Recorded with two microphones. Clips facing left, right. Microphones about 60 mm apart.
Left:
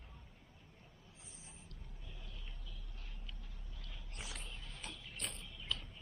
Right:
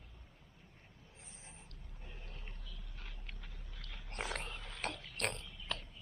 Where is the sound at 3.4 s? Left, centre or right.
Right.